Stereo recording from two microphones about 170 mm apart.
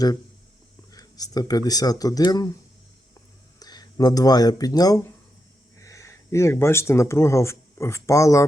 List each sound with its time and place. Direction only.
0.9 s speech: 20° left (ahead or behind)
3.6 s speech: 25° left (ahead or behind)